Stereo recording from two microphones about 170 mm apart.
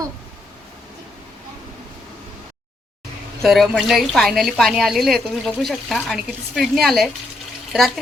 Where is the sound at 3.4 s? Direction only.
Centre (ahead or behind).